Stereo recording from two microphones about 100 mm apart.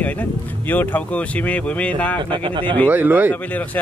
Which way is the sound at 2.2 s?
55° right (ahead or behind).